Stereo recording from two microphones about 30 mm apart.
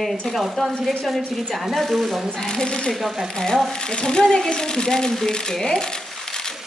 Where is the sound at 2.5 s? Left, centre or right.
Left.